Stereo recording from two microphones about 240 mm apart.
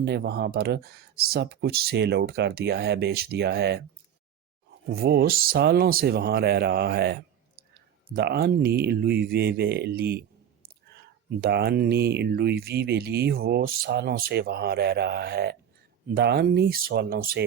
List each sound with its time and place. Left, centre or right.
0.0 s speech: right
4.9 s speech: right